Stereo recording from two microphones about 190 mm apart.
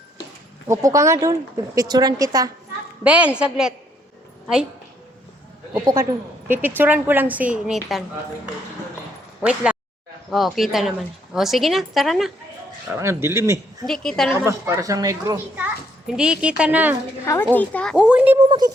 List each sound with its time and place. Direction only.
0.7 s speech: 15° right (ahead or behind)
3.0 s a woman's voice: 5° right (ahead or behind)
5.8 s speech: 20° right (ahead or behind)
6.5 s speech: 10° right (ahead or behind)
9.4 s a woman's voice: 5° right (ahead or behind)
12.9 s speech: 15° right (ahead or behind)
13.8 s a woman's voice: centre (ahead or behind)
14.3 s speech: 15° right (ahead or behind)
16.0 s a woman's voice: 5° right (ahead or behind)
17.2 s speech: 15° left (ahead or behind)
17.9 s a woman's voice: 5° right (ahead or behind)
18.4 s speech: 20° right (ahead or behind)